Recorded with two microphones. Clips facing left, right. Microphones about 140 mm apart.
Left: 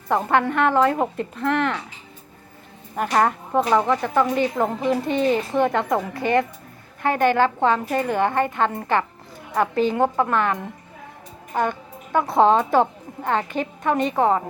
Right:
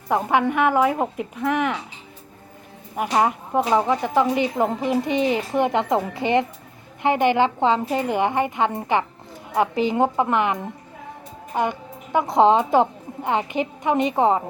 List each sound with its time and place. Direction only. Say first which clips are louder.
0.1 s speech: even; 10° right (ahead or behind)
2.9 s speech: even; 10° right (ahead or behind)